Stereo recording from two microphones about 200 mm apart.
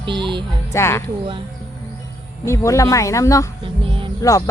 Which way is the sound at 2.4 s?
15° left (ahead or behind).